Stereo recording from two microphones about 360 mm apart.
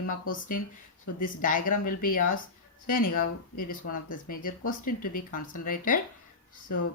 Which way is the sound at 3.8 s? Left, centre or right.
Left.